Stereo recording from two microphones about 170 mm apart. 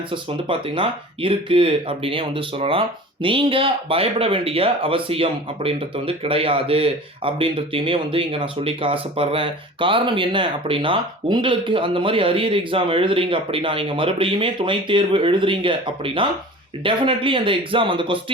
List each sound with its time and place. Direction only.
0.1 s speech: 30° right (ahead or behind)